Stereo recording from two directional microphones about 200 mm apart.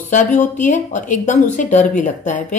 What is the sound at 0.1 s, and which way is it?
A woman's voice, 40° left (ahead or behind).